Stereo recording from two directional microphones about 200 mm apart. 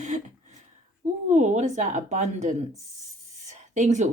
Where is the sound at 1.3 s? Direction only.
35° right (ahead or behind).